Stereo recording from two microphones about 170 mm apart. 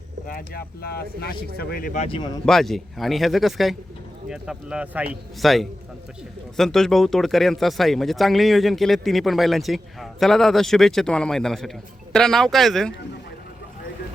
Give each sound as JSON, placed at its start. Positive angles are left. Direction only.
{"t": 0.3, "sound": "speech", "side_deg": 60}
{"t": 2.0, "sound": "speech", "side_deg": 30}
{"t": 2.5, "sound": "speech", "side_deg": 0}